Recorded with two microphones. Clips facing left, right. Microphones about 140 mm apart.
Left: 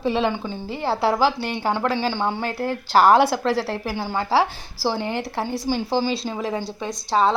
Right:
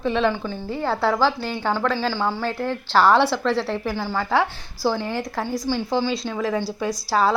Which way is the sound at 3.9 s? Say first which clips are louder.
Left 2 dB; 20° left (ahead or behind).